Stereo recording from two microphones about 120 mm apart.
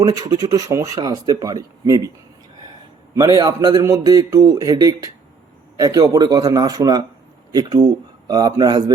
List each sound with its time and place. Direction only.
0.0 s speech: 30° right (ahead or behind)
3.2 s speech: 30° right (ahead or behind)